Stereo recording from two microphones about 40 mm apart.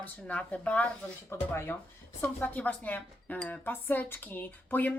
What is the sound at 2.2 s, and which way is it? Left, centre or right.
A woman's voice, left.